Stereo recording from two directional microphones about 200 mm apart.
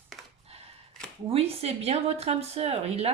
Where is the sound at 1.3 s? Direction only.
30° right (ahead or behind).